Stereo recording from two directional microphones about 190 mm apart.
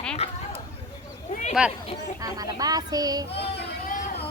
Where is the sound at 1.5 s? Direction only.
5° right (ahead or behind).